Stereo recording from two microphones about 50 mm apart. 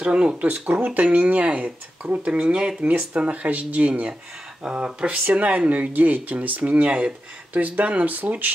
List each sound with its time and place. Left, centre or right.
0.0 s speech: right